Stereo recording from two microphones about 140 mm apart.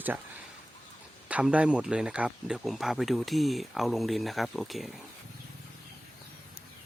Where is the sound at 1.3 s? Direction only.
10° right (ahead or behind).